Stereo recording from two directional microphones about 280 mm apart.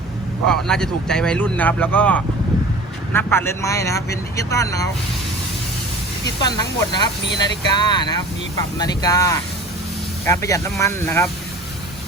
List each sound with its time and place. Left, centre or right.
0.4 s speech: centre
6.4 s speech: centre